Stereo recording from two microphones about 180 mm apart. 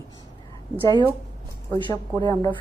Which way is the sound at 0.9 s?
15° left (ahead or behind).